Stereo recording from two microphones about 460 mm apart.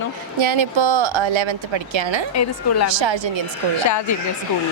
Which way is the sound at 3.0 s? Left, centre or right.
Right.